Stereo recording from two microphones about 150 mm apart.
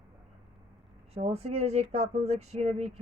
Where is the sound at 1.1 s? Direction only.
45° right (ahead or behind).